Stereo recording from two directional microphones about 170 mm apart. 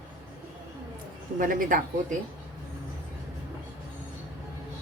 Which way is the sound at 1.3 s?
55° right (ahead or behind).